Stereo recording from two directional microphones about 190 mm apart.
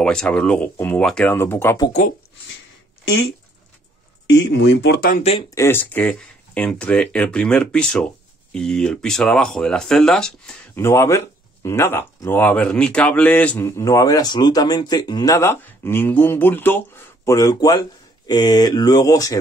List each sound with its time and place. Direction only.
0.0 s speech: 5° left (ahead or behind)
1.9 s speech: 40° left (ahead or behind)
4.3 s speech: 75° left (ahead or behind)
5.5 s speech: 15° left (ahead or behind)